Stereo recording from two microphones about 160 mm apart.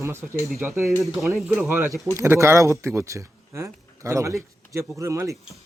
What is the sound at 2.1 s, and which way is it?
Speech, 20° right (ahead or behind).